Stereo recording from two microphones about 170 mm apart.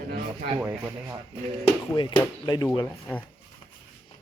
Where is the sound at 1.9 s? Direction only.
25° left (ahead or behind).